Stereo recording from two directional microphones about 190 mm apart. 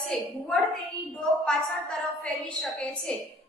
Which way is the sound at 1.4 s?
5° left (ahead or behind).